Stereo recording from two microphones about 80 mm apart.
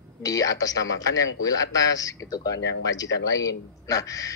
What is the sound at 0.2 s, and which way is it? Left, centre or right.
Speech, left.